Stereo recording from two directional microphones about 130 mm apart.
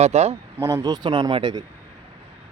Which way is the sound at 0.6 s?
25° right (ahead or behind).